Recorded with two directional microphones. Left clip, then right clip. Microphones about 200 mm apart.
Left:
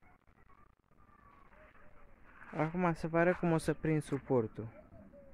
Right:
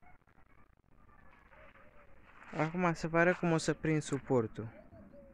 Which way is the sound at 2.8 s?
5° left (ahead or behind).